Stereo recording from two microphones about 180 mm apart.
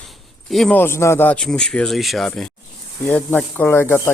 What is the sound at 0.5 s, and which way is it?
A man's voice, 5° left (ahead or behind).